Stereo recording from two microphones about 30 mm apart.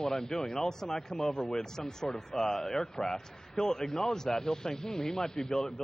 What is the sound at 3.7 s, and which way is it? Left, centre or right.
Speech, centre.